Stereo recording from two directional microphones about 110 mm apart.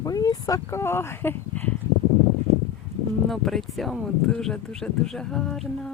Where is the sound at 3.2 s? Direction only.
Centre (ahead or behind).